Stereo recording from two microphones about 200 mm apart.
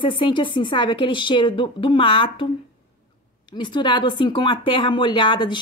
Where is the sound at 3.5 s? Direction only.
25° left (ahead or behind).